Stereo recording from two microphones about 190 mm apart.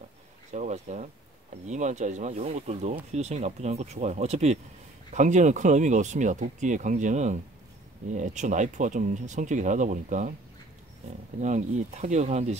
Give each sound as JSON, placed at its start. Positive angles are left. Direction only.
{"t": 0.5, "sound": "speech", "side_deg": -40}
{"t": 11.3, "sound": "speech", "side_deg": -40}